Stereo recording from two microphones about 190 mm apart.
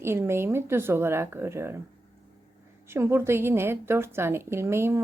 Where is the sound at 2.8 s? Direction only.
15° right (ahead or behind).